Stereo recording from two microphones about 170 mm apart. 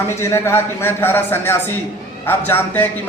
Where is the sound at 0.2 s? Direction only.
15° left (ahead or behind).